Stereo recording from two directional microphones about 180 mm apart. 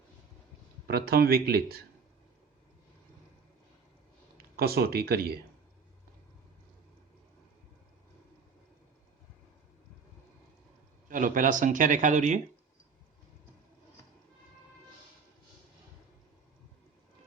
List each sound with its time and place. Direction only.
0.9 s speech: 60° right (ahead or behind)
4.5 s speech: 60° right (ahead or behind)
11.1 s speech: 45° right (ahead or behind)